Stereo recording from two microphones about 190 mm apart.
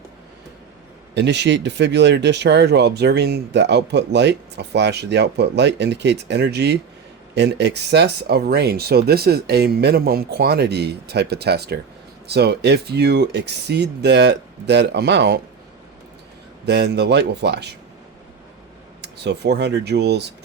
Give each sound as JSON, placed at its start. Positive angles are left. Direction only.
{"t": 1.1, "sound": "speech", "side_deg": -65}
{"t": 16.6, "sound": "speech", "side_deg": -60}
{"t": 19.0, "sound": "speech", "side_deg": -60}